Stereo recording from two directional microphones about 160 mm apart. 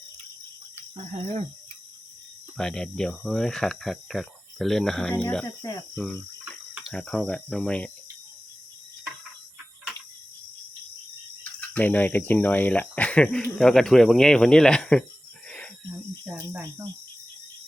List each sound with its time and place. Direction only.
0.8 s speech: 40° right (ahead or behind)
2.6 s speech: 5° left (ahead or behind)
6.9 s speech: 5° left (ahead or behind)
11.7 s speech: 10° left (ahead or behind)
15.4 s a sound: 5° left (ahead or behind)
16.2 s speech: 15° right (ahead or behind)